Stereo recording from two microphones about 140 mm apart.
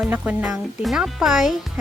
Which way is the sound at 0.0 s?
5° right (ahead or behind).